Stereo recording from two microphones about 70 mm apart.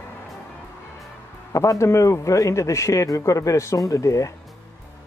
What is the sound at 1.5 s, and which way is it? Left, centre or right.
Speech, left.